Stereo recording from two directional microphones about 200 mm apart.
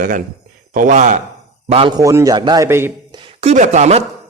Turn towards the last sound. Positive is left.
turn(degrees=-35)  # may be behind; listen again after turning